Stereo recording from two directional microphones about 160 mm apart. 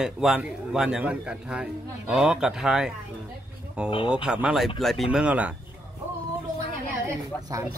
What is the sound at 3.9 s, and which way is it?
Speech, 30° left (ahead or behind).